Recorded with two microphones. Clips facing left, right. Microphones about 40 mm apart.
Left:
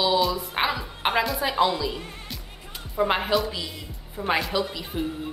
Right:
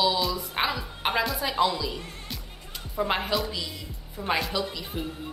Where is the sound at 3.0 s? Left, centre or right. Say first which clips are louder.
Left 4 dB; centre.